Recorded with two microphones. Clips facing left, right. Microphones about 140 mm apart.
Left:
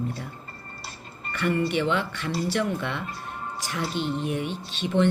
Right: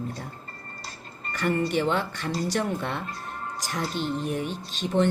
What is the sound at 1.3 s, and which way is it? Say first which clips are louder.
A woman's voice: even; 40° right (ahead or behind).